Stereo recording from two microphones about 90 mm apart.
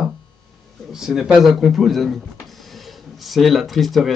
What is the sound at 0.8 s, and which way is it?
Speech, 5° right (ahead or behind).